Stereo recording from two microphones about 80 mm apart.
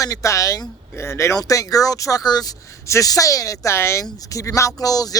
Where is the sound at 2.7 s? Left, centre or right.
Left.